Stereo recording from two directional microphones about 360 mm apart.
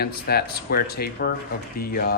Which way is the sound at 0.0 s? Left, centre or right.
Left.